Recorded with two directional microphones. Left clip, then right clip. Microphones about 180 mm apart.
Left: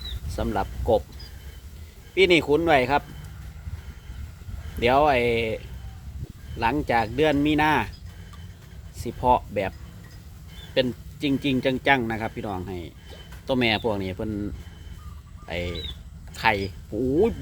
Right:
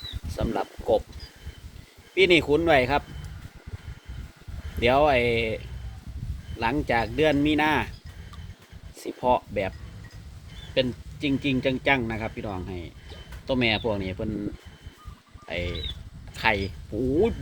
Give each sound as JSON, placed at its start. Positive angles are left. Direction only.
{"t": 0.3, "sound": "speech", "side_deg": 15}
{"t": 2.1, "sound": "speech", "side_deg": 10}
{"t": 4.8, "sound": "speech", "side_deg": 10}
{"t": 9.0, "sound": "speech", "side_deg": 15}
{"t": 10.8, "sound": "speech", "side_deg": 25}
{"t": 15.4, "sound": "speech", "side_deg": 20}